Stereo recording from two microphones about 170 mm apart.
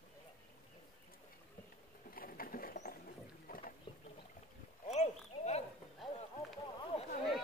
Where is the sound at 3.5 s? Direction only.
55° left (ahead or behind).